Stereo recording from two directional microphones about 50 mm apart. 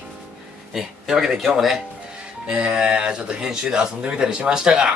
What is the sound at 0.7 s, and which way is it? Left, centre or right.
Speech, centre.